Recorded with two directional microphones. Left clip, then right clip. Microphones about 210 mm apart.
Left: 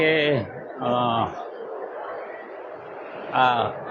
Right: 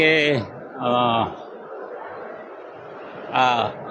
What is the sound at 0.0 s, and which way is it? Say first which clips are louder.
Speech: right 3 dB; 25° right (ahead or behind).